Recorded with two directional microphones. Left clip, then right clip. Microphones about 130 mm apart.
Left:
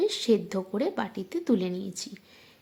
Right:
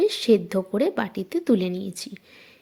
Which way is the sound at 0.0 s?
25° right (ahead or behind).